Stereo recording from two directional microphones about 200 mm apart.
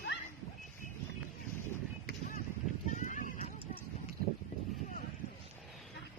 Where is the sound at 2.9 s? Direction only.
40° left (ahead or behind).